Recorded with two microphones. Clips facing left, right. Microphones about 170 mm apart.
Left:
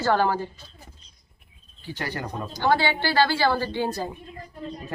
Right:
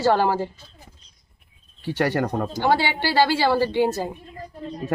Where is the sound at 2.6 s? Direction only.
15° right (ahead or behind).